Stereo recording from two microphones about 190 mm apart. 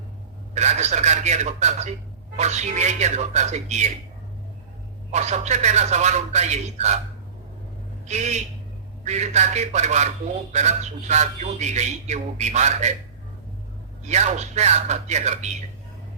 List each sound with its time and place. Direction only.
0.5 s speech: 35° right (ahead or behind)
5.1 s speech: 35° right (ahead or behind)
8.0 s a man's voice: 35° right (ahead or behind)
14.1 s speech: 40° right (ahead or behind)